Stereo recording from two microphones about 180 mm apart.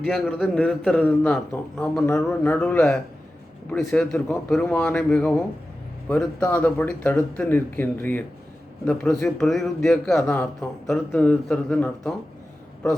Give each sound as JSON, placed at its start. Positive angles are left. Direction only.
{"t": 0.0, "sound": "a man's voice", "side_deg": 0}